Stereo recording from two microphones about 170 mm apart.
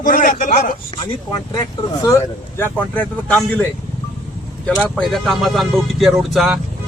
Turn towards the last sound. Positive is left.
turn(degrees=0)  # may be behind; listen again after turning